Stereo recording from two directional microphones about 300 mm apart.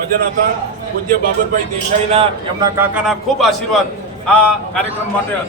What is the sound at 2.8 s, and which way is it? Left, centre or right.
Speech, centre.